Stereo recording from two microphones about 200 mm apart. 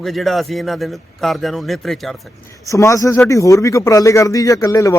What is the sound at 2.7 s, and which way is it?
Speech, 15° left (ahead or behind).